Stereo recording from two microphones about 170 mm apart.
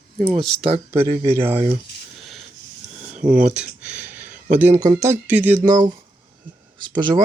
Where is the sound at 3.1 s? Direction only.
50° right (ahead or behind).